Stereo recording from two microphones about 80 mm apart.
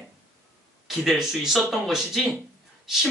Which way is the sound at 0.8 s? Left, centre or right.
Centre.